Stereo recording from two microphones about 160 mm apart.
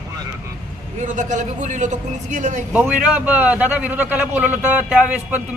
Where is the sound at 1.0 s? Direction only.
50° right (ahead or behind).